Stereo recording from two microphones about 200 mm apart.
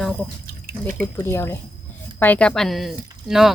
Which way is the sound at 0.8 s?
10° left (ahead or behind).